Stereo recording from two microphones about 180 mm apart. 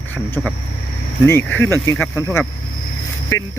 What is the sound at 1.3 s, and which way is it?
Speech, 10° left (ahead or behind).